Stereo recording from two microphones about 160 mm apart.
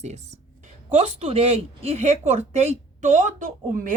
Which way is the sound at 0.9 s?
35° right (ahead or behind).